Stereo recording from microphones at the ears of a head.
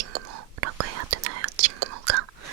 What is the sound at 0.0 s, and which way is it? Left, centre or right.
Whispering, right.